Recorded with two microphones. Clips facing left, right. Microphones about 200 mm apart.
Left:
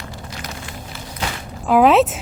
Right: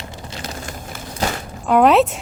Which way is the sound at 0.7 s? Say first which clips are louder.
Right 2 dB; 45° right (ahead or behind).